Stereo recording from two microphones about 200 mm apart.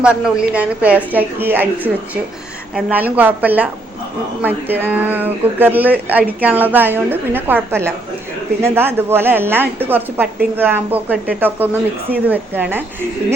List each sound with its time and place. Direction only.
0.0 s speech: 5° right (ahead or behind)